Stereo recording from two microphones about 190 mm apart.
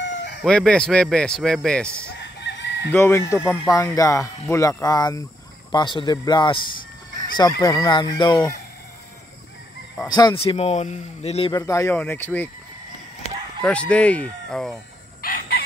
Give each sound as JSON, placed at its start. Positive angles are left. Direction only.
{"t": 0.0, "sound": "chicken", "side_deg": 70}
{"t": 0.4, "sound": "speech", "side_deg": 5}
{"t": 2.1, "sound": "chicken", "side_deg": 65}
{"t": 2.9, "sound": "speech", "side_deg": 15}
{"t": 5.7, "sound": "fowl", "side_deg": 25}
{"t": 10.0, "sound": "speech", "side_deg": 20}
{"t": 11.5, "sound": "speech", "side_deg": 15}
{"t": 13.6, "sound": "speech", "side_deg": 5}
{"t": 15.2, "sound": "chicken", "side_deg": 50}